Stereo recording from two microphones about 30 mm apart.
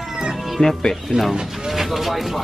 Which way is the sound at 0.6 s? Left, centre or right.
Centre.